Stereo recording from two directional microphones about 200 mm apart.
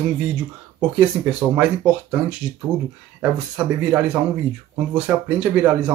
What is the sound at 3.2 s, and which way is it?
Speech, 5° right (ahead or behind).